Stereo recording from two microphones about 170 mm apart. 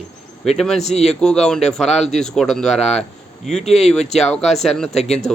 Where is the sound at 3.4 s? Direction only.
40° left (ahead or behind).